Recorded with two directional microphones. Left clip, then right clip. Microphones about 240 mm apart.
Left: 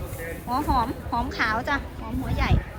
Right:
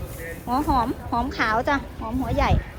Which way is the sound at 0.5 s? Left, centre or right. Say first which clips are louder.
Right 2 dB; centre.